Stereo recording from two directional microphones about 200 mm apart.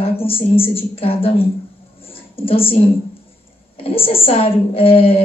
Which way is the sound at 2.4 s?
30° left (ahead or behind).